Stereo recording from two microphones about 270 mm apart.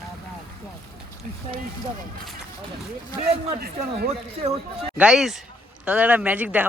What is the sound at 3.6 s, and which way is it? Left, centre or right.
Speech, right.